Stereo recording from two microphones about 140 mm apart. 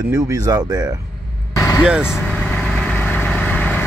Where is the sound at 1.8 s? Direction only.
5° right (ahead or behind).